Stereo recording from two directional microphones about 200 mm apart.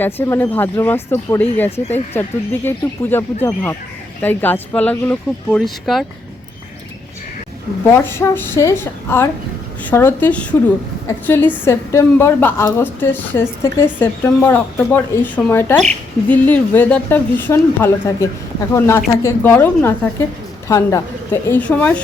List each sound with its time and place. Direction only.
0.0 s a woman's voice: 10° left (ahead or behind)
7.9 s a woman's voice: 10° left (ahead or behind)